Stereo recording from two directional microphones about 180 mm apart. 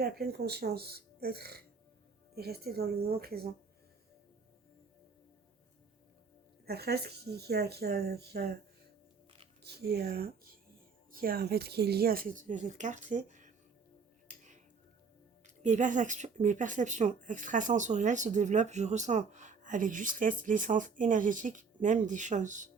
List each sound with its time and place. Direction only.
0.0 s speech: 60° right (ahead or behind)
6.7 s speech: 60° right (ahead or behind)
9.6 s speech: 60° right (ahead or behind); by 13.5 s 45° right (ahead or behind)
14.3 s music: 45° right (ahead or behind)
15.4 s speech: 40° right (ahead or behind)